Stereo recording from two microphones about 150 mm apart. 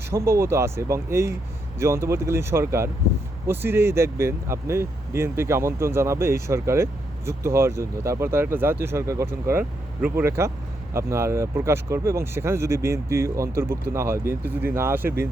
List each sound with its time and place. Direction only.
0.1 s speech: 15° right (ahead or behind)